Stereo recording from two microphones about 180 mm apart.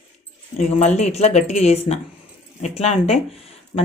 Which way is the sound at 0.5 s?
40° left (ahead or behind).